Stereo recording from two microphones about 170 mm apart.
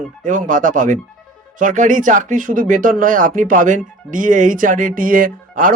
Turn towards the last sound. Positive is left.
turn(degrees=-55)  # may be behind; listen again after turning